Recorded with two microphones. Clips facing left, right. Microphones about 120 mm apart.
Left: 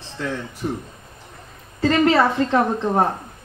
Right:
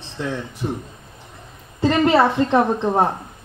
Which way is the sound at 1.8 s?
20° right (ahead or behind).